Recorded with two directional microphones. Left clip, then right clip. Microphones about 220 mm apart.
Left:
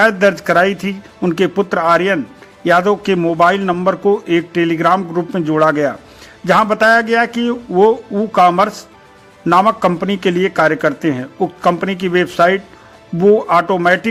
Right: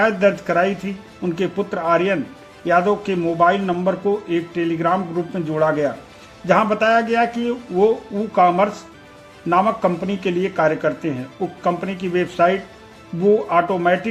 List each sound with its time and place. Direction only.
0.0 s a man's voice: 25° left (ahead or behind)